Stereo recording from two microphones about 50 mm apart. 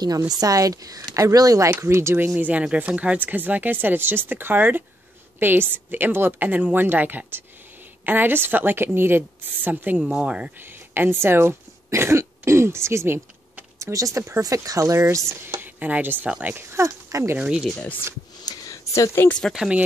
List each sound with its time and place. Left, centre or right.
0.4 s speech: right
2.1 s a woman's voice: right
9.9 s speech: right
10.6 s speech: right
13.7 s speech: right
14.2 s speech: right
15.6 s speech: right
16.7 s speech: right
18.7 s a sound: left
19.6 s speech: right